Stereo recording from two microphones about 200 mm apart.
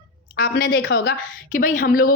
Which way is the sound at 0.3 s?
50° left (ahead or behind).